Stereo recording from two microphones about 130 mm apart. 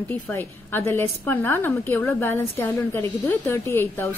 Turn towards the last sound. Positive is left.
turn(degrees=20)  # may be behind; listen again after turning